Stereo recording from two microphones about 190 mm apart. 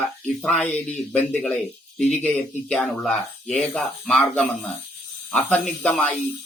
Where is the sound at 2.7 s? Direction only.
5° left (ahead or behind).